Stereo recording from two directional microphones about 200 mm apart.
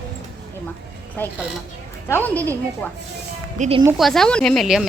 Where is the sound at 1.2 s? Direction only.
10° left (ahead or behind).